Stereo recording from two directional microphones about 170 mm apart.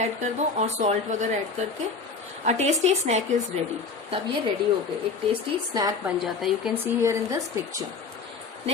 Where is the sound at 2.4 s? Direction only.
40° right (ahead or behind).